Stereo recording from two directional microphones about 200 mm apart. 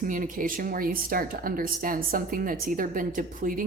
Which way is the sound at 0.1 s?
40° right (ahead or behind).